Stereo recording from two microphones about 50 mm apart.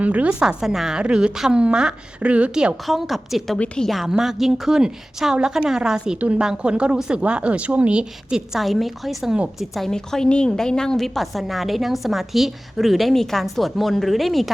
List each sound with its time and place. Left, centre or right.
0.0 s speech: right
0.3 s a woman's voice: centre
2.8 s a woman's voice: centre
6.1 s speech: right
8.5 s a woman's voice: centre
9.9 s a woman's voice: centre